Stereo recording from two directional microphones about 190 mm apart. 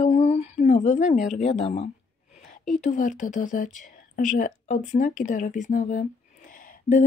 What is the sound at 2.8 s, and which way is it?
Speech, 40° left (ahead or behind).